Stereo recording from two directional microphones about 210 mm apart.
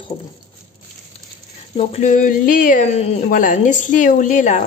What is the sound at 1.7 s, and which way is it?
A woman's voice, 30° left (ahead or behind).